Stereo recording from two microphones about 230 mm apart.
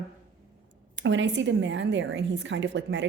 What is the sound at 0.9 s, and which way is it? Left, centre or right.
A woman's voice, right.